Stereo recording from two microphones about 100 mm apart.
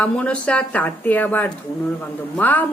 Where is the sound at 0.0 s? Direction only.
10° left (ahead or behind).